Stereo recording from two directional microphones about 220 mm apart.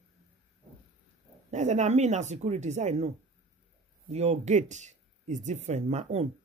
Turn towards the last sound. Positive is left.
turn(degrees=-30)  # may be behind; listen again after turning